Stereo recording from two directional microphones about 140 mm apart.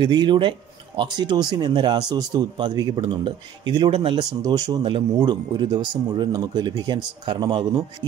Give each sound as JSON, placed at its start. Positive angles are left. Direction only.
{"t": 0.0, "sound": "speech", "side_deg": -30}